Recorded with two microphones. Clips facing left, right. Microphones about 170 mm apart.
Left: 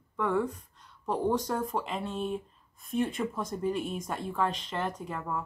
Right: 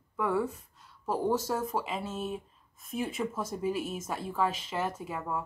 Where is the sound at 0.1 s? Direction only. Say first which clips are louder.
Left 1 dB; 5° right (ahead or behind).